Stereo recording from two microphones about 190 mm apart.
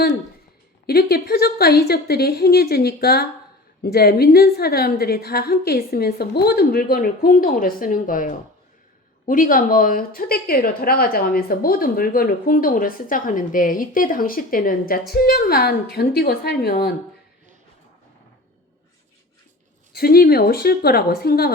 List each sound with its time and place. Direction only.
0.9 s a woman's voice: 55° left (ahead or behind)
19.9 s a woman's voice: 55° left (ahead or behind)